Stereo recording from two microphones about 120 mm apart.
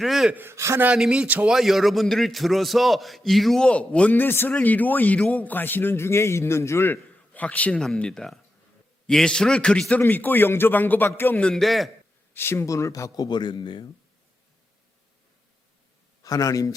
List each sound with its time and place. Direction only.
0.0 s a man's voice: centre (ahead or behind)
0.3 s a man's voice: 20° right (ahead or behind)
0.9 s a man's voice: 5° right (ahead or behind)
12.3 s speech: 20° left (ahead or behind); by 13.8 s 40° left (ahead or behind)
16.2 s speech: 30° left (ahead or behind)